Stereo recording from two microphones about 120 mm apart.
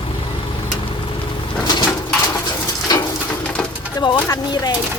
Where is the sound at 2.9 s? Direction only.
35° left (ahead or behind).